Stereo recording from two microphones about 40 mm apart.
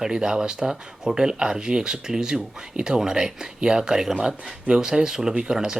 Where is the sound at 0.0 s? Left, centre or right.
Centre.